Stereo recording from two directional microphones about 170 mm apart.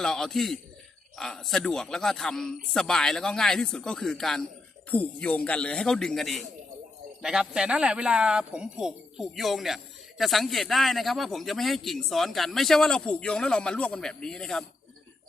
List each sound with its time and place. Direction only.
0.0 s speech: 5° left (ahead or behind)